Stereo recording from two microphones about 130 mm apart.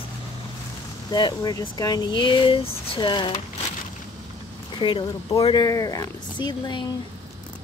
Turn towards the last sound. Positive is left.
turn(degrees=35)  # may be behind; listen again after turning